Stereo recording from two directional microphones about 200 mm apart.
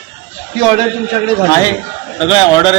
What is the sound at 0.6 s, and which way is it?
Speech, 30° right (ahead or behind).